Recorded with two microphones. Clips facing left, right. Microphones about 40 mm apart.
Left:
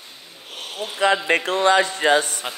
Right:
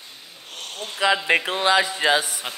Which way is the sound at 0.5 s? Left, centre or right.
Centre.